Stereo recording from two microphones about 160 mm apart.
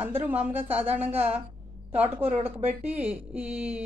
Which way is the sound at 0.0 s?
10° right (ahead or behind).